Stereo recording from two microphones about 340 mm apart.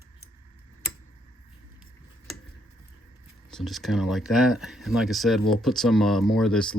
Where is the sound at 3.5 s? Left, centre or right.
Centre.